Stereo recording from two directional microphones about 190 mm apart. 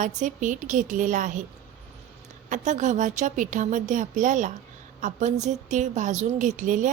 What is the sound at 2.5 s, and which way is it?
A woman's voice, 40° right (ahead or behind).